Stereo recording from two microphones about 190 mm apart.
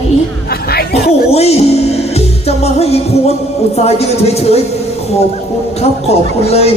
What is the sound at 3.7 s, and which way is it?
Speech, 35° left (ahead or behind).